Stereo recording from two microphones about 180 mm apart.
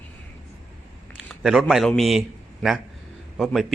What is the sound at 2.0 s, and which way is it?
Speech, centre (ahead or behind).